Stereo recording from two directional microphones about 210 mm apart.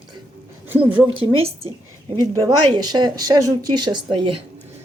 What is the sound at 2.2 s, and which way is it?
Speech, 20° right (ahead or behind).